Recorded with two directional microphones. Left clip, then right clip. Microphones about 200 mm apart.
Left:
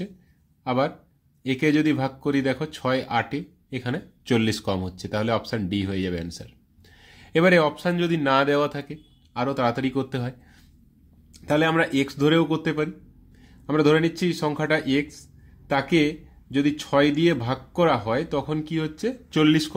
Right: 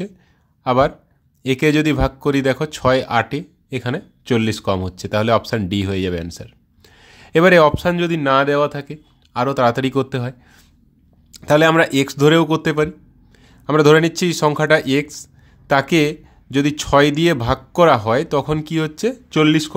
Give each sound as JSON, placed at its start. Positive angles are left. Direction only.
{"t": 0.7, "sound": "speech", "side_deg": -35}